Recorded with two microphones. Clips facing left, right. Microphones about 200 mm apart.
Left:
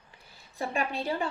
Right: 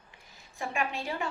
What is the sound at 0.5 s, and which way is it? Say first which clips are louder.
Speech: left 2 dB; 35° left (ahead or behind).